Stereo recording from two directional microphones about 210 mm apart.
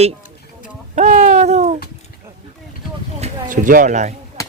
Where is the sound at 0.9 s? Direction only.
35° right (ahead or behind).